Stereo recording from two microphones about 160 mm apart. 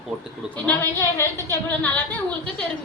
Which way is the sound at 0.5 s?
10° left (ahead or behind).